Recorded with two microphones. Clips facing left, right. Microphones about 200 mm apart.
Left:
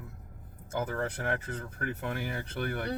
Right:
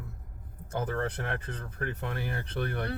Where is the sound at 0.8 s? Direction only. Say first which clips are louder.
Right 1 dB; 5° left (ahead or behind).